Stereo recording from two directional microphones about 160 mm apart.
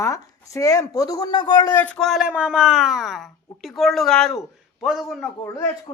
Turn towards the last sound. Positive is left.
turn(degrees=20)  # may be behind; listen again after turning